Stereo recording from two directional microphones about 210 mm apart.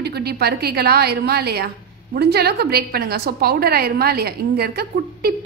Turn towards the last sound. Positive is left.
turn(degrees=-50)  # may be behind; listen again after turning